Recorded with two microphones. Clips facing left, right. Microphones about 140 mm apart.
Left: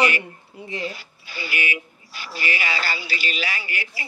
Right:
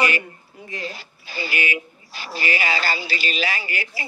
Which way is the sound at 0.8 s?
30° right (ahead or behind).